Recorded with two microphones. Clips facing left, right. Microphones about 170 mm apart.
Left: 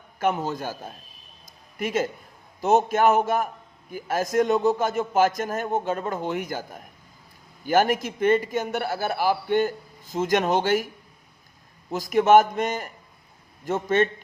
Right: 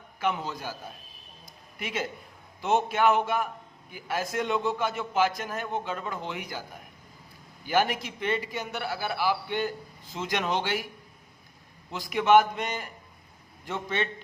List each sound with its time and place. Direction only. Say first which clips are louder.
0.2 s a man's voice: left 5 dB; 45° left (ahead or behind)
1.5 s a sound: left 8 dB; 45° left (ahead or behind)
2.6 s a man's voice: left 5 dB; 40° left (ahead or behind)
7.7 s a man's voice: left 5 dB; 45° left (ahead or behind)
11.9 s a man's voice: left 4 dB; 45° left (ahead or behind)